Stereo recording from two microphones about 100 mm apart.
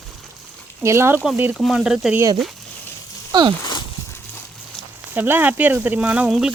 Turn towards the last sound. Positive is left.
turn(degrees=-10)  # may be behind; listen again after turning